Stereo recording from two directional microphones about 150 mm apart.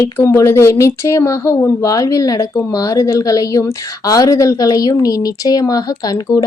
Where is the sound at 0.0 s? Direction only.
20° left (ahead or behind).